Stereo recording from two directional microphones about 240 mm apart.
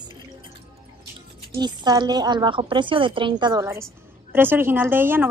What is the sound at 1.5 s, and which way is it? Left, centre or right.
A woman's voice, centre.